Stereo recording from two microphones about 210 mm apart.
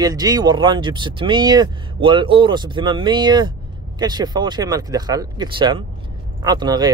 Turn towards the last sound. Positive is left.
turn(degrees=-20)  # may be behind; listen again after turning